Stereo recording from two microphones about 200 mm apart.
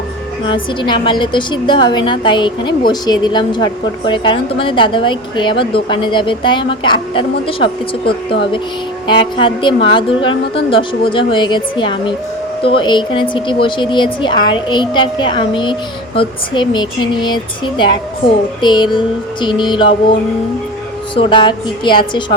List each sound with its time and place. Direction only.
0.4 s a woman's voice: 25° left (ahead or behind)
21.2 s a woman's voice: 25° left (ahead or behind)